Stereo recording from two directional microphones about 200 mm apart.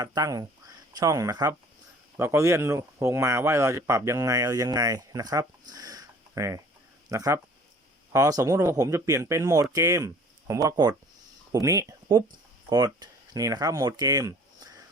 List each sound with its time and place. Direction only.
0.0 s speech: 20° right (ahead or behind)